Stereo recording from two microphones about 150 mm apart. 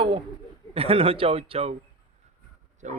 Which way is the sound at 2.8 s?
55° right (ahead or behind).